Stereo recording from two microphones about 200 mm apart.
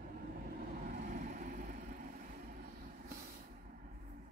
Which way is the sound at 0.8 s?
40° right (ahead or behind).